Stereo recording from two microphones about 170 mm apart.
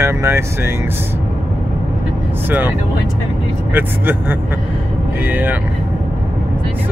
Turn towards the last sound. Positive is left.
turn(degrees=-10)  # may be behind; listen again after turning